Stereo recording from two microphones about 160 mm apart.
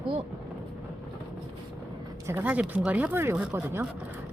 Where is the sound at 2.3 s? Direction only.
10° right (ahead or behind).